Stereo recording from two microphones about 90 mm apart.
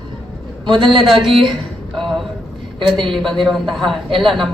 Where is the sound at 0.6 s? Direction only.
60° right (ahead or behind).